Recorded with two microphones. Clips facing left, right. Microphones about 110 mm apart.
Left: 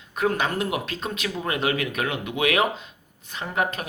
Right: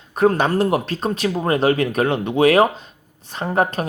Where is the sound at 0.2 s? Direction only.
35° right (ahead or behind).